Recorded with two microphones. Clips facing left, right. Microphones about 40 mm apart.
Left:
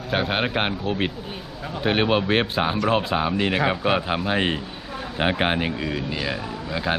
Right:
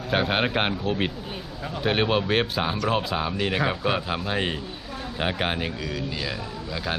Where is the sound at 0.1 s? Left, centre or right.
Centre.